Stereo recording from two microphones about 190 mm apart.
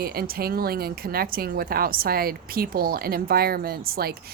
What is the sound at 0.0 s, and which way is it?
A woman's voice, 55° right (ahead or behind).